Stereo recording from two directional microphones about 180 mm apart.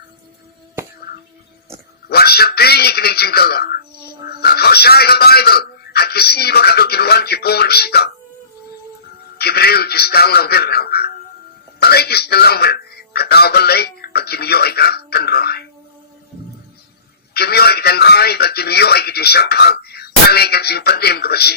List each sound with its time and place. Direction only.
2.0 s speech: 60° left (ahead or behind)
9.4 s speech: 60° left (ahead or behind)
17.3 s speech: 60° left (ahead or behind)